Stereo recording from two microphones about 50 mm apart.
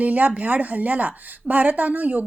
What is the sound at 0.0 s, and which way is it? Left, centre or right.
Speech, right.